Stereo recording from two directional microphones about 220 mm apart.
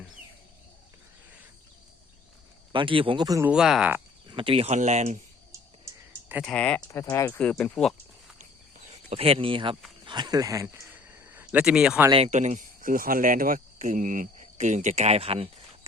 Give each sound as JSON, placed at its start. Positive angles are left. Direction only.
{"t": 2.7, "sound": "speech", "side_deg": -25}
{"t": 3.5, "sound": "speech", "side_deg": -5}
{"t": 4.3, "sound": "speech", "side_deg": -25}
{"t": 5.5, "sound": "a sound", "side_deg": -10}
{"t": 6.4, "sound": "speech", "side_deg": 5}
{"t": 8.9, "sound": "speech", "side_deg": -25}
{"t": 12.1, "sound": "speech", "side_deg": -30}